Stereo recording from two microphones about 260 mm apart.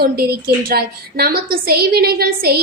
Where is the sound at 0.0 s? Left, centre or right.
Right.